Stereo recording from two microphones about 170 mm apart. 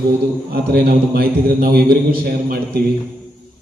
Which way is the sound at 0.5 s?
65° right (ahead or behind).